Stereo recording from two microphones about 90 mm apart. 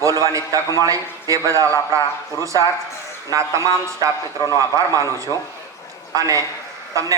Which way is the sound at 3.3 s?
35° right (ahead or behind).